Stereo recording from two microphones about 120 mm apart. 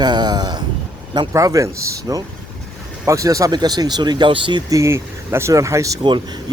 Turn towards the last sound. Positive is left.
turn(degrees=-25)  # may be behind; listen again after turning